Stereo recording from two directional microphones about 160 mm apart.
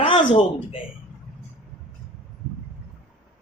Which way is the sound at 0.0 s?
30° left (ahead or behind).